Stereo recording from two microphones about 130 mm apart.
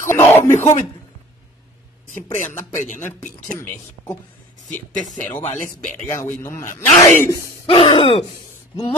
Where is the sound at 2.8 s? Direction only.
65° left (ahead or behind).